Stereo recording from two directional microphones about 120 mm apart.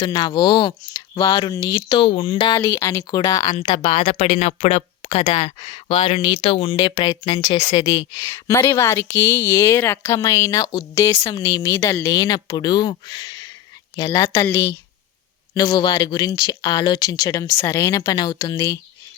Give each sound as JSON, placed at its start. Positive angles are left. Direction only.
{"t": 0.0, "sound": "speech", "side_deg": 40}
{"t": 2.6, "sound": "speech", "side_deg": 20}
{"t": 11.3, "sound": "speech", "side_deg": 35}
{"t": 14.1, "sound": "speech", "side_deg": 25}
{"t": 15.5, "sound": "speech", "side_deg": 35}